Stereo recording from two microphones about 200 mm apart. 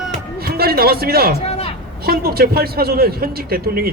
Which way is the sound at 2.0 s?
50° right (ahead or behind).